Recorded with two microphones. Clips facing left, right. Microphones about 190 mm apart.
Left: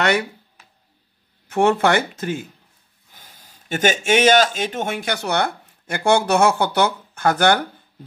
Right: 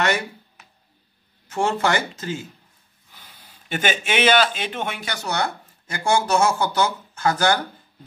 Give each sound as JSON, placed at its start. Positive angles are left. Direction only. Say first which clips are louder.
{"t": 1.5, "sound": "speech", "louder": "left 5 dB", "side_deg": 60}
{"t": 3.1, "sound": "speech", "louder": "even", "side_deg": 45}